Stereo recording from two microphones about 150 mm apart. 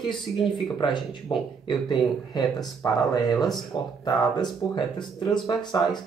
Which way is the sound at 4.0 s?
30° left (ahead or behind).